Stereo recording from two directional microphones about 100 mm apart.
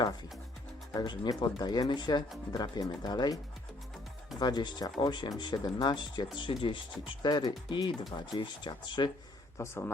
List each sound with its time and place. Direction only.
0.9 s speech: 50° left (ahead or behind)
4.4 s speech: 45° left (ahead or behind)
9.6 s speech: 25° left (ahead or behind)